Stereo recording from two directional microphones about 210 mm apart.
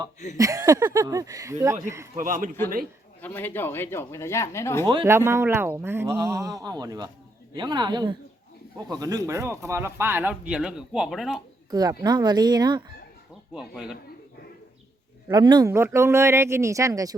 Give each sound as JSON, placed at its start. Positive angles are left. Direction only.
{"t": 0.3, "sound": "speech", "side_deg": -15}
{"t": 2.1, "sound": "speech", "side_deg": -40}
{"t": 3.2, "sound": "speech", "side_deg": 10}
{"t": 5.0, "sound": "speech", "side_deg": -10}
{"t": 11.7, "sound": "speech", "side_deg": -20}
{"t": 13.5, "sound": "speech", "side_deg": -5}
{"t": 15.3, "sound": "speech", "side_deg": -20}